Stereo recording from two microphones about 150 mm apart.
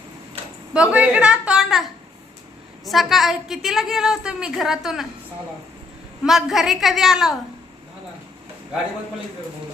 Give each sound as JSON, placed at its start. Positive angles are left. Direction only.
{"t": 0.7, "sound": "a woman's voice", "side_deg": -10}
{"t": 6.2, "sound": "a woman's voice", "side_deg": 0}